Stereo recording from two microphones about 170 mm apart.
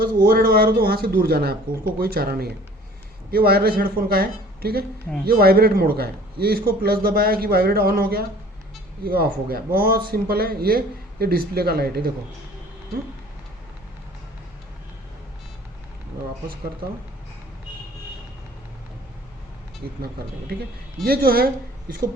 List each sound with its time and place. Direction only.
0.2 s a man's voice: 60° right (ahead or behind)
19.8 s a man's voice: 65° right (ahead or behind)
21.0 s a man's voice: 65° right (ahead or behind)